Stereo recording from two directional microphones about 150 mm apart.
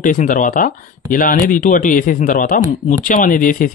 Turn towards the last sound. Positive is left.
turn(degrees=60)  # may be behind; listen again after turning